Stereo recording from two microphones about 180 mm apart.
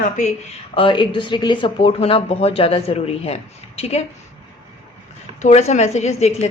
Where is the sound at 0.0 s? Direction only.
40° left (ahead or behind).